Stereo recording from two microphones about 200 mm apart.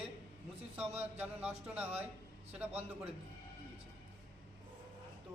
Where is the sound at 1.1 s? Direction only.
5° right (ahead or behind).